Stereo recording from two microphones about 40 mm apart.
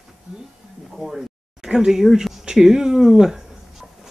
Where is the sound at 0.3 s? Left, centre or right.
Right.